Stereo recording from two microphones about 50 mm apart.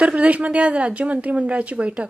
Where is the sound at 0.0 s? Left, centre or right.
Centre.